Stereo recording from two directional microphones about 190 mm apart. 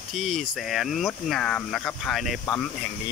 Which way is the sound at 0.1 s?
Centre (ahead or behind).